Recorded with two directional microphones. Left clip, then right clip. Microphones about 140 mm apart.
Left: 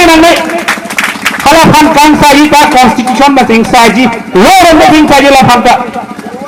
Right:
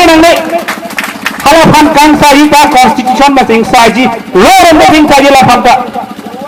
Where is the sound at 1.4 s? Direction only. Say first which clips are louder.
Even; 35° right (ahead or behind).